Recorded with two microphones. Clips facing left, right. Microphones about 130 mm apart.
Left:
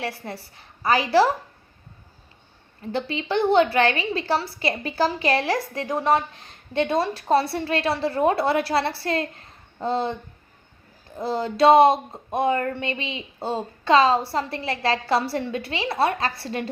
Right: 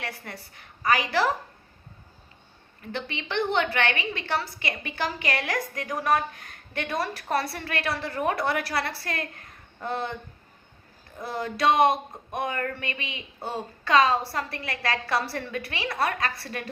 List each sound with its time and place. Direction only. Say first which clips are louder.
0.0 s a woman's voice: left 6 dB; 30° left (ahead or behind)
2.8 s a woman's voice: left 7 dB; 30° left (ahead or behind)
11.2 s a woman's voice: left 7 dB; 25° left (ahead or behind)